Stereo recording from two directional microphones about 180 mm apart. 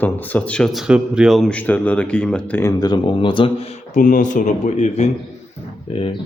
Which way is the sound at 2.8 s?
25° left (ahead or behind).